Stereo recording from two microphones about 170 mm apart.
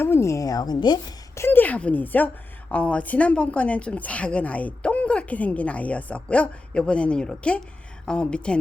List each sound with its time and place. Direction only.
0.0 s a woman's voice: 15° left (ahead or behind)
1.4 s speech: 10° left (ahead or behind)